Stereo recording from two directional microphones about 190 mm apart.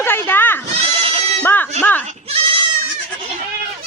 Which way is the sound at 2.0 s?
30° right (ahead or behind).